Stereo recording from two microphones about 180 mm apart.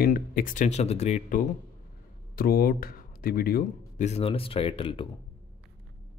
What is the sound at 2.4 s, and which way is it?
Speech, 55° left (ahead or behind).